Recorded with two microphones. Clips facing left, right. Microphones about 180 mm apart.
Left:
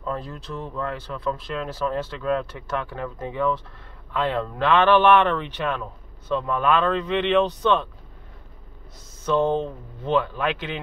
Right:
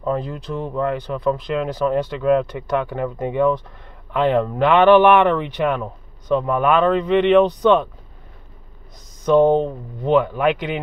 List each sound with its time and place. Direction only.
0.0 s speech: 15° right (ahead or behind)
9.2 s speech: 15° right (ahead or behind)